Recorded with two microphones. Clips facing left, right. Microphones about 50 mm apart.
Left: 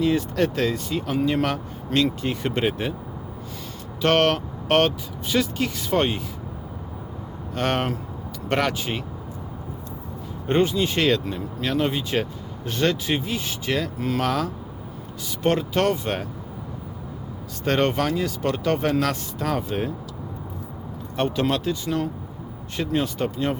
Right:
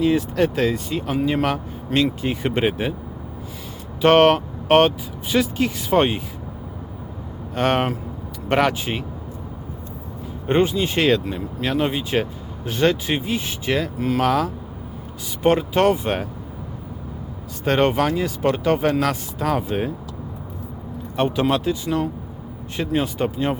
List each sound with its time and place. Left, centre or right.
0.0 s speech: centre
4.0 s speech: centre
7.5 s speech: centre
10.4 s speech: centre
17.7 s speech: centre
21.2 s speech: centre